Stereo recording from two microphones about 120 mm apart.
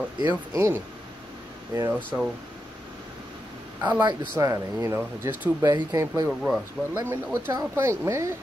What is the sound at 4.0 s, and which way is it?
Speech, 40° right (ahead or behind).